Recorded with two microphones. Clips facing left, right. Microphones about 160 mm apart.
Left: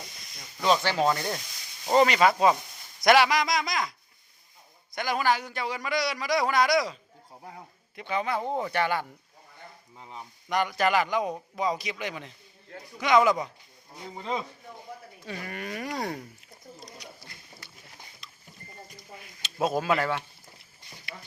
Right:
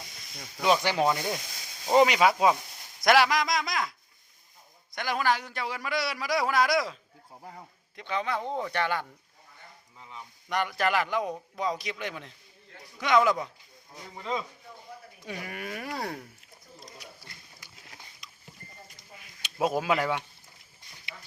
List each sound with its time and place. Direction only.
0.6 s a man's voice: 10° right (ahead or behind); by 9.0 s 5° left (ahead or behind)
10.0 s a sound: 35° left (ahead or behind)
10.5 s a man's voice: centre (ahead or behind)
14.2 s speech: 30° left (ahead or behind)
15.2 s a man's voice: 10° right (ahead or behind)
17.6 s a sound: 10° right (ahead or behind)
19.4 s speech: 10° right (ahead or behind)